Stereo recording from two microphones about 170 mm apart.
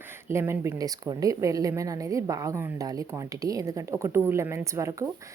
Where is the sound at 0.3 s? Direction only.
15° right (ahead or behind).